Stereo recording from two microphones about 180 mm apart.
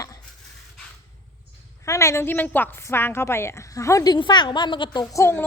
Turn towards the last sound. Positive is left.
turn(degrees=15)  # may be behind; listen again after turning